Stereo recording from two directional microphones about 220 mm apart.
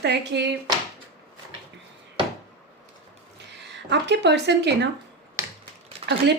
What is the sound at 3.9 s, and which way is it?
Speech, 50° right (ahead or behind).